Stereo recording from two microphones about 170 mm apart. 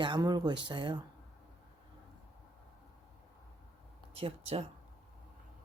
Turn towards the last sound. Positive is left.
turn(degrees=-35)  # may be behind; listen again after turning